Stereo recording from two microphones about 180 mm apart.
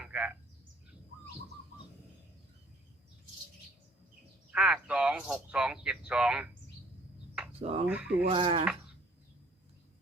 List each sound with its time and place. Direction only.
0.0 s a sound: 5° right (ahead or behind)
4.5 s speech: 5° right (ahead or behind)
7.6 s speech: 35° right (ahead or behind)
7.9 s speech: 5° right (ahead or behind)
8.3 s speech: 30° right (ahead or behind)